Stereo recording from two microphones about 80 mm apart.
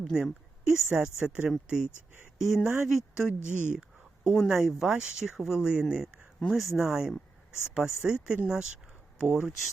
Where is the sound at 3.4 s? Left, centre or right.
Centre.